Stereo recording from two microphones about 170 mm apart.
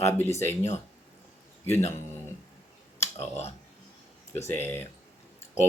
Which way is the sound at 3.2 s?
40° left (ahead or behind).